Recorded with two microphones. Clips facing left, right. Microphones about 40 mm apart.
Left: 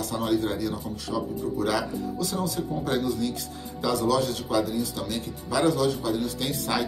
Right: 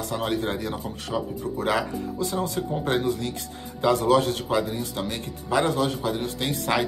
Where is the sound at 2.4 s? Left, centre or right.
Right.